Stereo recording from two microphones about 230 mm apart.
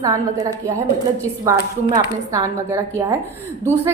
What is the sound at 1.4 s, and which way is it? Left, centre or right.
A woman's voice, centre.